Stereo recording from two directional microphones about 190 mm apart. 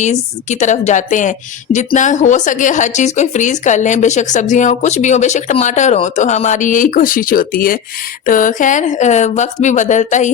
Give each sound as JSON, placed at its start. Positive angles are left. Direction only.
{"t": 0.6, "sound": "a woman's voice", "side_deg": 40}